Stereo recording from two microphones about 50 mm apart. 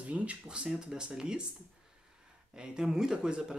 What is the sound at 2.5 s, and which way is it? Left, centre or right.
Speech, centre.